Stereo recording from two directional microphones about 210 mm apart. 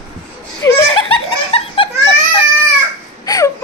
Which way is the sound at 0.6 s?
15° left (ahead or behind).